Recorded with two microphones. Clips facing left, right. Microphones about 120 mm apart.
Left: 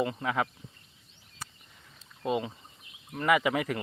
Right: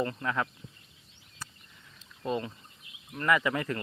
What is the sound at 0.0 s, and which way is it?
Speech, 15° left (ahead or behind).